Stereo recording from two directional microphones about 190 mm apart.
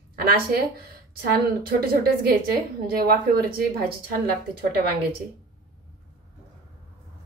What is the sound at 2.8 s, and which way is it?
A woman's voice, 50° right (ahead or behind).